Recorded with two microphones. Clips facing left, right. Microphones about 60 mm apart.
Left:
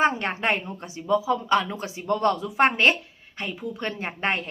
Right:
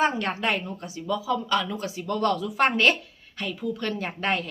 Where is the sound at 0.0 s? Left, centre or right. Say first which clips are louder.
Left 1 dB; left.